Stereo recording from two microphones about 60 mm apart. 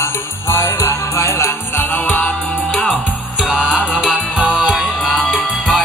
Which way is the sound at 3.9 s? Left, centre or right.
Centre.